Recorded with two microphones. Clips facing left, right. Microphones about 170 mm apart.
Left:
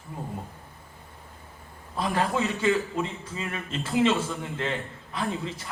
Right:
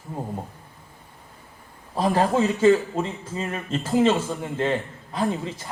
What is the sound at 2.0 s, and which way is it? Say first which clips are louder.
A man's voice: right 6 dB; 35° right (ahead or behind).